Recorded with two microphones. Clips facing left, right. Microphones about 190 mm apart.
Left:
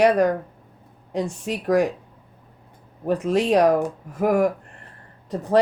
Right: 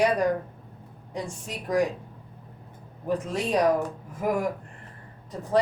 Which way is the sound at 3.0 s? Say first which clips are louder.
Left 7 dB; 70° left (ahead or behind).